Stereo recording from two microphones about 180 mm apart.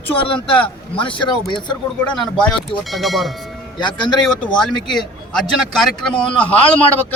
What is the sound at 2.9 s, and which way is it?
Speech, centre (ahead or behind).